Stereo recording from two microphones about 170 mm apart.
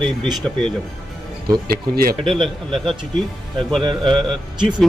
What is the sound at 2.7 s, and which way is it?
A man's voice, centre (ahead or behind).